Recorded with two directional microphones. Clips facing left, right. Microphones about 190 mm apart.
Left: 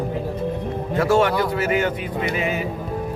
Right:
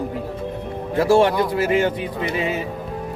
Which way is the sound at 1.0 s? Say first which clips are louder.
Right 2 dB; 30° right (ahead or behind).